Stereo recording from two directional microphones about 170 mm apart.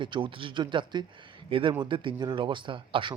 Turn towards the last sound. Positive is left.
turn(degrees=-30)  # may be behind; listen again after turning